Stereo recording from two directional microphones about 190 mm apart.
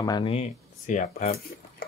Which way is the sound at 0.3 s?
40° left (ahead or behind).